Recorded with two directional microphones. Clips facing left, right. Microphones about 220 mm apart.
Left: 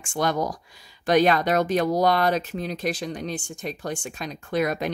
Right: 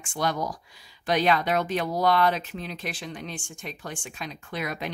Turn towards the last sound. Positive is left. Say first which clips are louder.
# left 8 dB
turn(degrees=45)  # may be behind; listen again after turning